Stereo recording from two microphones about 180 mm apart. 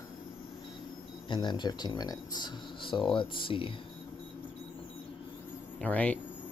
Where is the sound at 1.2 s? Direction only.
25° left (ahead or behind).